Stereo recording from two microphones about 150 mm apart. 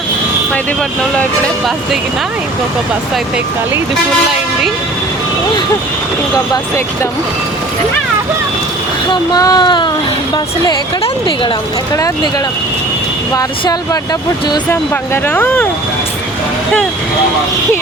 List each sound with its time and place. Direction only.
9.3 s a woman's voice: 25° left (ahead or behind)
13.3 s speech: 25° left (ahead or behind)
14.7 s speech: 15° left (ahead or behind)